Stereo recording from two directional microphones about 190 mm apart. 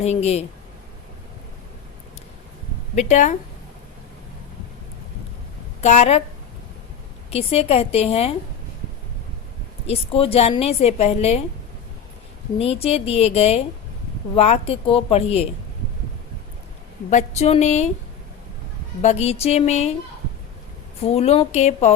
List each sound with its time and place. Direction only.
0.0 s a woman's voice: 35° left (ahead or behind)
2.9 s a woman's voice: 40° left (ahead or behind)
5.8 s a woman's voice: 35° left (ahead or behind)
7.3 s a woman's voice: 30° left (ahead or behind)
9.8 s a woman's voice: 30° left (ahead or behind)
12.5 s a woman's voice: 30° left (ahead or behind)
17.1 s a woman's voice: 35° left (ahead or behind)
19.0 s a woman's voice: 35° left (ahead or behind)
21.0 s a woman's voice: 30° left (ahead or behind)